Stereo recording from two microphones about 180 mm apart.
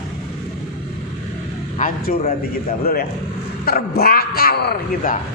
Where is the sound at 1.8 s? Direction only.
50° left (ahead or behind).